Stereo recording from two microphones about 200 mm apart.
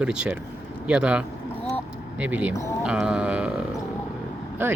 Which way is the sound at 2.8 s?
5° right (ahead or behind).